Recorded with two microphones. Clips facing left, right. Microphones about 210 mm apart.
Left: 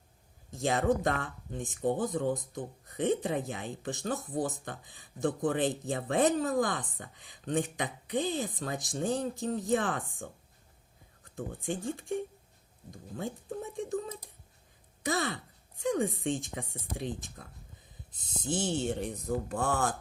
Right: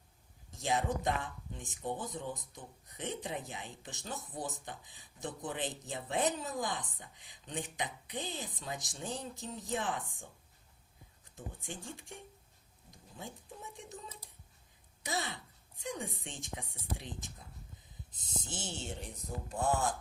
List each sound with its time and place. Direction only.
0.5 s speech: 55° left (ahead or behind)
11.3 s speech: 55° left (ahead or behind)
13.1 s speech: 60° left (ahead or behind)
18.4 s speech: 55° left (ahead or behind)